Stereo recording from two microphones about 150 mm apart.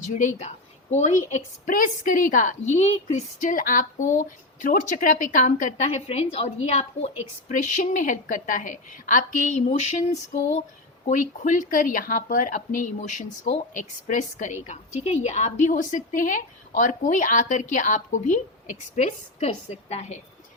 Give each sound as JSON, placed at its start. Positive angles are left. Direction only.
{"t": 0.1, "sound": "a woman's voice", "side_deg": 55}
{"t": 1.7, "sound": "speech", "side_deg": 65}
{"t": 7.4, "sound": "a woman's voice", "side_deg": 55}